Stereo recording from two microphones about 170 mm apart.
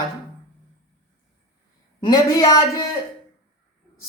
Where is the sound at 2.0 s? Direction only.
20° left (ahead or behind).